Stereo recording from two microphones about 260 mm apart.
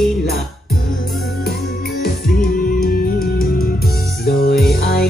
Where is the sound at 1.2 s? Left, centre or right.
Left.